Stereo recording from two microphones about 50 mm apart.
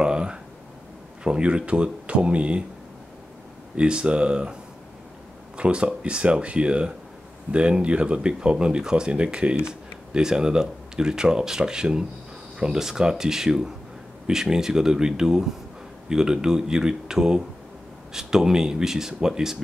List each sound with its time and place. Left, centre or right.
0.0 s a sound: centre
1.2 s speech: centre
3.7 s speech: centre
5.6 s speech: right